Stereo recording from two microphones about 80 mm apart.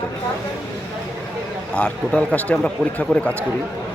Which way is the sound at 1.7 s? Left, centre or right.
Centre.